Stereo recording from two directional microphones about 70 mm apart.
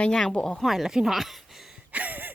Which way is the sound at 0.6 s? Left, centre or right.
Centre.